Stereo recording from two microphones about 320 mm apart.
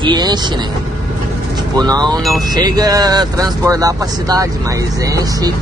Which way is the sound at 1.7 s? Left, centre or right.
Centre.